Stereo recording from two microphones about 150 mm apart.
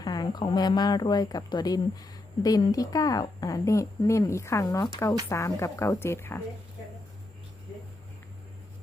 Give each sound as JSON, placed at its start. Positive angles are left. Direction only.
{"t": 0.0, "sound": "a woman's voice", "side_deg": 25}